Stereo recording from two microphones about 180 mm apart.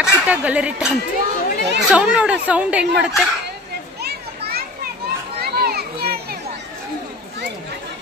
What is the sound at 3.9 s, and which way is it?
Children playing, 60° right (ahead or behind).